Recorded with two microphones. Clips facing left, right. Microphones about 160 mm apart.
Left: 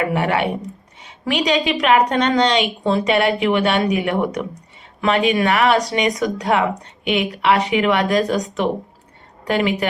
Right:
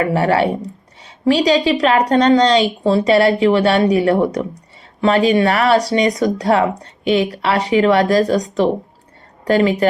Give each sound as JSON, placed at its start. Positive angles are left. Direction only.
{"t": 0.0, "sound": "speech", "side_deg": -35}